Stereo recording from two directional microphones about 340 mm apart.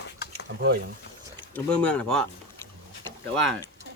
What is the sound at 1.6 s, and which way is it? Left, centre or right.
Speech, centre.